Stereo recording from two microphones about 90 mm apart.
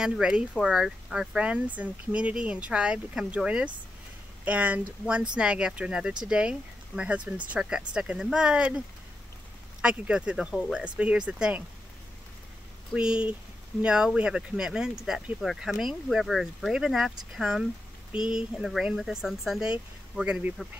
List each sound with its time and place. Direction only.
0.0 s speech: 10° right (ahead or behind)
12.9 s speech: 10° right (ahead or behind)